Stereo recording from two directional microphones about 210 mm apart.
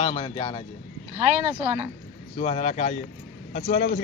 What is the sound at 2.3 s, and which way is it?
A man's voice, 30° left (ahead or behind).